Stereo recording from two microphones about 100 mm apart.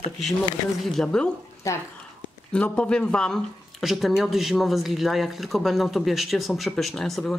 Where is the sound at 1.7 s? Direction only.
30° left (ahead or behind).